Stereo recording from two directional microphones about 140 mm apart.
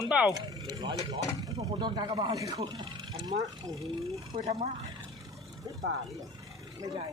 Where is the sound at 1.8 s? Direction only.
30° right (ahead or behind).